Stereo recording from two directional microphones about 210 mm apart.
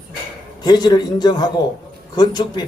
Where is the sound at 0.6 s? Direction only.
20° left (ahead or behind).